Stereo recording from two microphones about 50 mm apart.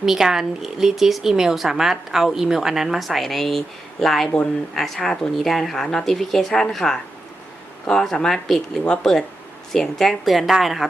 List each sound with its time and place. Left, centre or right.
0.0 s a woman's voice: centre
8.1 s a woman's voice: centre